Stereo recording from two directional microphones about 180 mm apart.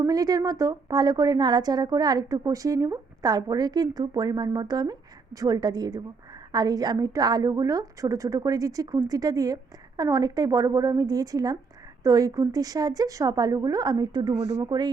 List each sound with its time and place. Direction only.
0.0 s a woman's voice: 20° right (ahead or behind)